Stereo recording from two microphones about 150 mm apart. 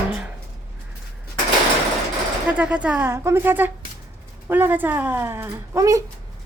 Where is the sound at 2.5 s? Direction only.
10° right (ahead or behind).